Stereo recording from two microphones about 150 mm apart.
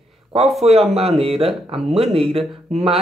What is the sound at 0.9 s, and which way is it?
Speech, 40° right (ahead or behind).